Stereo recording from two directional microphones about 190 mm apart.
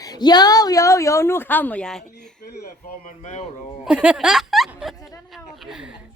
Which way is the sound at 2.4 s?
55° left (ahead or behind).